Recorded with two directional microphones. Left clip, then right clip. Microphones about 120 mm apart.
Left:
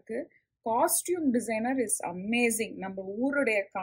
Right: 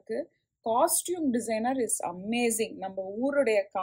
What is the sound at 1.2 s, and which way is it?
Speech, 45° right (ahead or behind).